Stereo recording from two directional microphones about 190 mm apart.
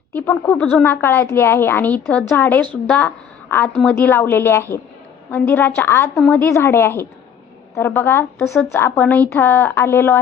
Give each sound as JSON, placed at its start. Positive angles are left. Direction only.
{"t": 0.1, "sound": "a woman's voice", "side_deg": 10}
{"t": 6.5, "sound": "a woman's voice", "side_deg": 15}